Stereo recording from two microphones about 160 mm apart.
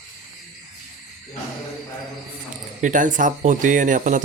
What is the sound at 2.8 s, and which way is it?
Speech, 50° right (ahead or behind).